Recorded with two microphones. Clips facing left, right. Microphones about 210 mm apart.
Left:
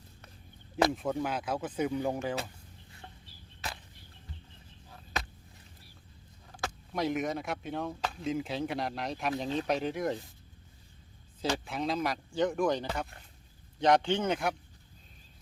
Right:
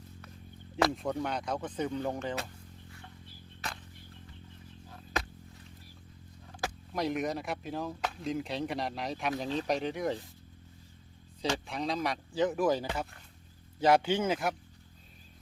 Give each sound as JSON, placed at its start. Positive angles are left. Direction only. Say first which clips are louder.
{"t": 0.9, "sound": "speech", "louder": "left 1 dB", "side_deg": 5}
{"t": 6.9, "sound": "speech", "louder": "left 1 dB", "side_deg": 0}
{"t": 11.4, "sound": "speech", "louder": "left 1 dB", "side_deg": 0}